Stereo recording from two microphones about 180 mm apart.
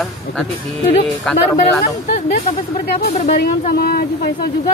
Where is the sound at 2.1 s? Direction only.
45° left (ahead or behind).